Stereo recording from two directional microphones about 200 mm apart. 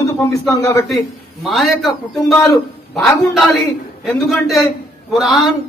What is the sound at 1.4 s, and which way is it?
Speech, centre (ahead or behind).